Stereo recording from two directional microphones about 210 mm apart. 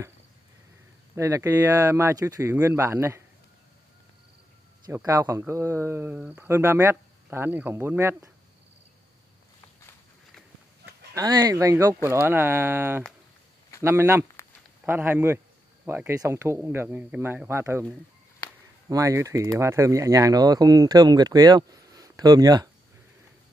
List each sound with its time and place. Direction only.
1.1 s speech: 15° right (ahead or behind)
4.8 s speech: 15° right (ahead or behind)
11.1 s speech: 20° right (ahead or behind)